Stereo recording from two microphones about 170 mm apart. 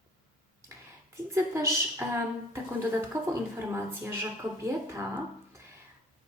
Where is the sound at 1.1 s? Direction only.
15° right (ahead or behind).